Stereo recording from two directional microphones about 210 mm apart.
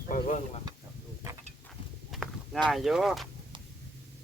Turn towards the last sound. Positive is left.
turn(degrees=0)  # may be behind; listen again after turning